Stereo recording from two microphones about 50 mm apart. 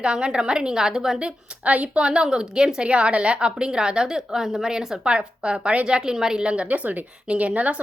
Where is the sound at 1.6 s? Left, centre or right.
Right.